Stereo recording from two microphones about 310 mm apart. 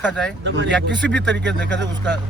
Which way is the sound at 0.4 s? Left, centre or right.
Right.